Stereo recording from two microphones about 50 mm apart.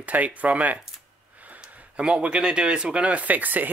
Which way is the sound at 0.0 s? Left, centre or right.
Right.